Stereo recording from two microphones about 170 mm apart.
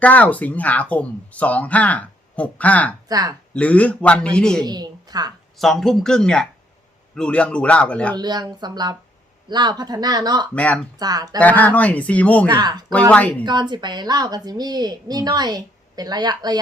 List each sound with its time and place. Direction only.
0.0 s speech: 10° left (ahead or behind)
3.1 s a woman's voice: 20° right (ahead or behind)
3.5 s speech: 10° left (ahead or behind)
4.6 s a woman's voice: 25° right (ahead or behind)
5.5 s speech: centre (ahead or behind)
8.1 s a woman's voice: 25° right (ahead or behind)
10.5 s speech: 10° left (ahead or behind)
11.0 s a woman's voice: 20° right (ahead or behind)
11.3 s speech: 10° left (ahead or behind)
12.5 s a woman's voice: 25° right (ahead or behind)
12.9 s speech: 10° left (ahead or behind)
13.4 s a woman's voice: 25° right (ahead or behind)